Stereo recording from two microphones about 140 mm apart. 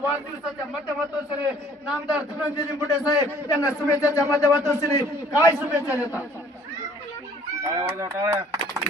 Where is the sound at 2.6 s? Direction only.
25° left (ahead or behind).